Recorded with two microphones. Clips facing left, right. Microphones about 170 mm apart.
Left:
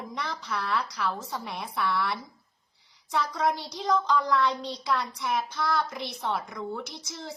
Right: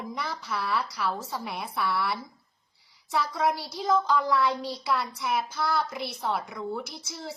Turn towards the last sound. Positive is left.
turn(degrees=-5)  # may be behind; listen again after turning